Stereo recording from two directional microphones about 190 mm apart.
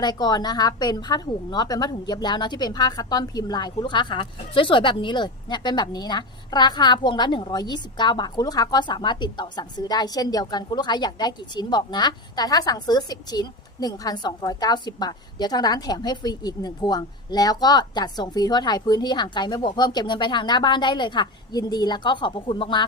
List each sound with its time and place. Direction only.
0.0 s a woman's voice: 20° left (ahead or behind)